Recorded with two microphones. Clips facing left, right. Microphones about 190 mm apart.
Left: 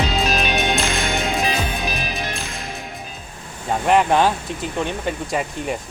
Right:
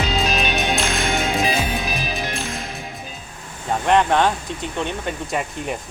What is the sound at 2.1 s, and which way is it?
Music, centre (ahead or behind).